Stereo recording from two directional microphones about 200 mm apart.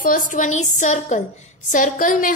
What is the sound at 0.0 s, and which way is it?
A woman's voice, 40° left (ahead or behind).